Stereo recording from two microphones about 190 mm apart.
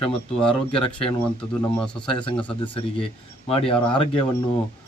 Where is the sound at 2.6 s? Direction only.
30° left (ahead or behind).